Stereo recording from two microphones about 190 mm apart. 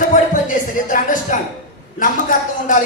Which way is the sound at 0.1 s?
45° left (ahead or behind).